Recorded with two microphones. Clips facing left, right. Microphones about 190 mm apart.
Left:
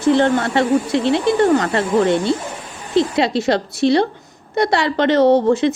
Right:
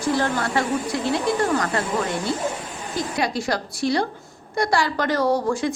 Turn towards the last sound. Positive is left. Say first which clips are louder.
# left 8 dB
turn(degrees=25)  # may be behind; listen again after turning